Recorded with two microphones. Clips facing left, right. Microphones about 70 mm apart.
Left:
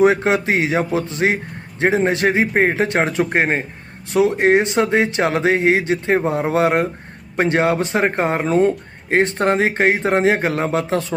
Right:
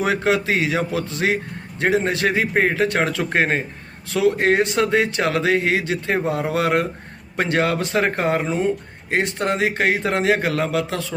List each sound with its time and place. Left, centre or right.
0.0 s speech: left
8.4 s speech: left
9.0 s speech: left